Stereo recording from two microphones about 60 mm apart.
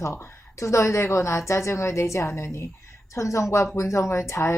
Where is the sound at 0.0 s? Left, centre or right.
Left.